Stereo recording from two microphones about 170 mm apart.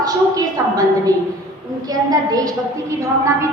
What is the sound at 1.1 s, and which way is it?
A woman's voice, 20° right (ahead or behind).